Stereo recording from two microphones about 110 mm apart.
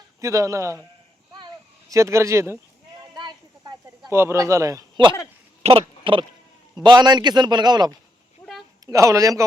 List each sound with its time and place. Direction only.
0.2 s a man's voice: 30° right (ahead or behind)
1.9 s a man's voice: 25° right (ahead or behind)
3.2 s a sound: 40° right (ahead or behind)
4.1 s a man's voice: 25° right (ahead or behind)
5.6 s speech: 55° right (ahead or behind)
6.7 s a man's voice: 40° right (ahead or behind)
8.9 s a man's voice: 30° right (ahead or behind)